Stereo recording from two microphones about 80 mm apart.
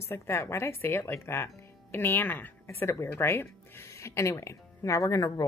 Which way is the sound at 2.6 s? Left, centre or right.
Left.